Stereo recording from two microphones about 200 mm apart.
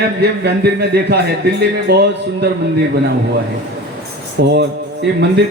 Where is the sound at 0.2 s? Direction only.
55° right (ahead or behind).